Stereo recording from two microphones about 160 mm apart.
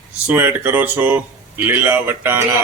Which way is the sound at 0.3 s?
10° right (ahead or behind).